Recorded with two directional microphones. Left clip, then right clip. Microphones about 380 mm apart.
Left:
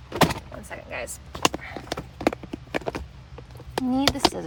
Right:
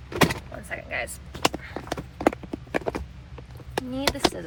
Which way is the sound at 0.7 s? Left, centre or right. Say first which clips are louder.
Right 4 dB; centre.